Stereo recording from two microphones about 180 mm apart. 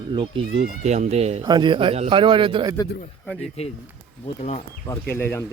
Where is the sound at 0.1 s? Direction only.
30° right (ahead or behind).